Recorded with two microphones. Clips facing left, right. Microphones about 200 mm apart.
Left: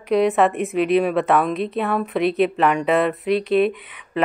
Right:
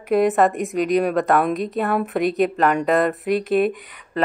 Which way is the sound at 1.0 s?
Centre (ahead or behind).